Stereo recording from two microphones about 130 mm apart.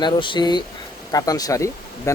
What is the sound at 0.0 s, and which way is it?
Speech, 35° left (ahead or behind).